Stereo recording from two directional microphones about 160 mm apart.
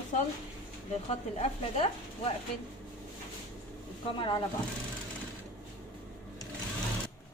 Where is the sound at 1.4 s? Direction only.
40° left (ahead or behind).